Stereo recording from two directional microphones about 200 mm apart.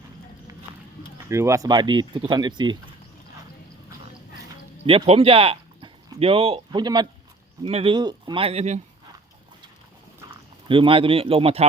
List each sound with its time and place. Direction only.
1.3 s speech: 15° right (ahead or behind)
4.9 s speech: 30° right (ahead or behind)
10.7 s speech: 25° right (ahead or behind)